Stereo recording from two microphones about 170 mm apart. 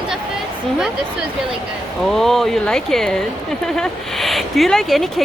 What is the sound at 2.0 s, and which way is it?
Speech, centre (ahead or behind).